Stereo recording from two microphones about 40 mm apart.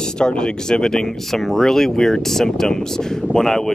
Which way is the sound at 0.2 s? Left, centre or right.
Left.